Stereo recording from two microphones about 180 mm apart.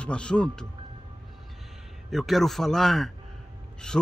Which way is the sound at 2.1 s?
Centre (ahead or behind).